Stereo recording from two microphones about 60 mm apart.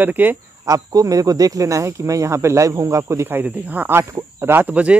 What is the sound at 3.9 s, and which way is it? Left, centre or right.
Speech, right.